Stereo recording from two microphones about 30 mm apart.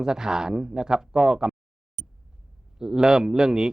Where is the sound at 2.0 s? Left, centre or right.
Left.